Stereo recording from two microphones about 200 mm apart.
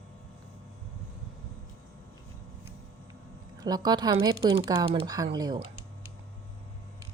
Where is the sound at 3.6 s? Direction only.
20° right (ahead or behind).